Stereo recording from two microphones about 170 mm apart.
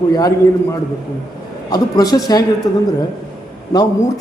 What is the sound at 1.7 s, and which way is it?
A man's voice, 20° left (ahead or behind).